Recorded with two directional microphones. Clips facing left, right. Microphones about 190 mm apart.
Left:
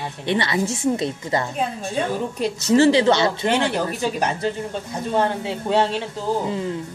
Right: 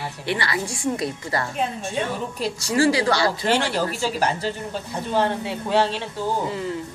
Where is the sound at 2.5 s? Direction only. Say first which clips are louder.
Left 5 dB; 20° left (ahead or behind).